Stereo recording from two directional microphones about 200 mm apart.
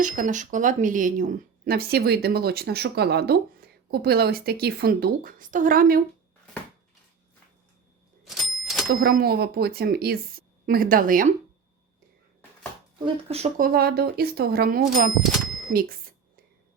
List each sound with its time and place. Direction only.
0.0 s a woman's voice: 40° right (ahead or behind)
8.2 s a sound: centre (ahead or behind)
8.9 s a woman's voice: 45° right (ahead or behind)
13.2 s speech: 30° right (ahead or behind)
13.6 s a woman's voice: 50° right (ahead or behind)